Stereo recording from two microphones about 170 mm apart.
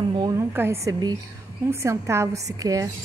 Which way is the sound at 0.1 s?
20° right (ahead or behind).